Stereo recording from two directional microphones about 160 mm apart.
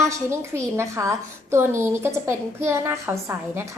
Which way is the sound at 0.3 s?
15° right (ahead or behind).